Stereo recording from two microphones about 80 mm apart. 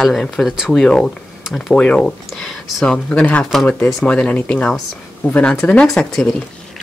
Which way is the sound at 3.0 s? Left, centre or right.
Centre.